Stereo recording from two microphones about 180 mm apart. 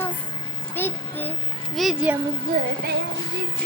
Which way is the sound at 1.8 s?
5° right (ahead or behind).